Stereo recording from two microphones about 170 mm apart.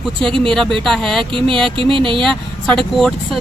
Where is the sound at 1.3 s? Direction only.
30° right (ahead or behind).